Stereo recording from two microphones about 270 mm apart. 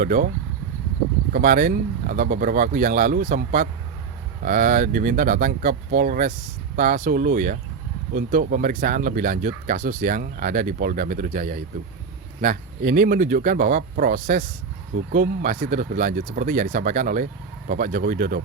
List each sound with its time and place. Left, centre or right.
0.0 s speech: right
1.3 s speech: right